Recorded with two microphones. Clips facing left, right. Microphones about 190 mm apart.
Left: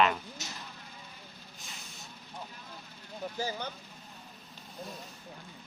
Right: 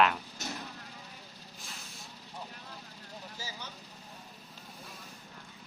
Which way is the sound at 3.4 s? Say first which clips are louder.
Left 11 dB; 55° left (ahead or behind).